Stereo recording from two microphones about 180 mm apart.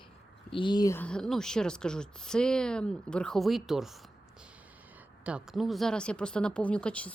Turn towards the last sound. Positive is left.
turn(degrees=5)  # may be behind; listen again after turning